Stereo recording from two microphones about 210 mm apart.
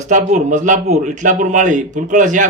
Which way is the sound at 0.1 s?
35° right (ahead or behind).